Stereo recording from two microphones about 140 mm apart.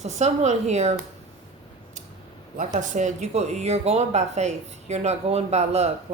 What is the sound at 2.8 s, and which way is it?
Speech, 60° right (ahead or behind).